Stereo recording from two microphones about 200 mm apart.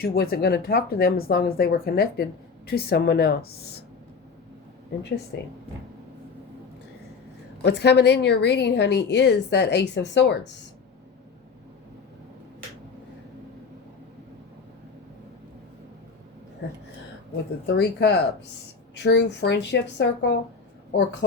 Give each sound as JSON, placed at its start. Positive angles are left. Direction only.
{"t": 0.0, "sound": "speech", "side_deg": 50}
{"t": 5.3, "sound": "a woman's voice", "side_deg": 60}
{"t": 7.6, "sound": "a woman's voice", "side_deg": 55}
{"t": 17.7, "sound": "a woman's voice", "side_deg": 60}